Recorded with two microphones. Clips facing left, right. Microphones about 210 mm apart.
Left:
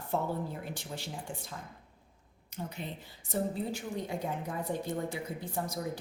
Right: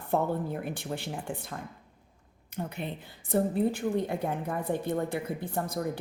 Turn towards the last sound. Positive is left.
turn(degrees=-55)  # may be behind; listen again after turning